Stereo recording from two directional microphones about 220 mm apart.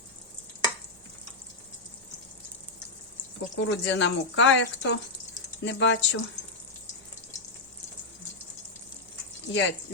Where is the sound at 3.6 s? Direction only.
55° left (ahead or behind).